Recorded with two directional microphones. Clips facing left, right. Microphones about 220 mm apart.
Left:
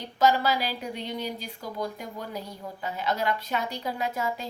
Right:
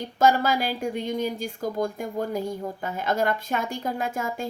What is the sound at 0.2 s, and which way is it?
Speech, 50° right (ahead or behind).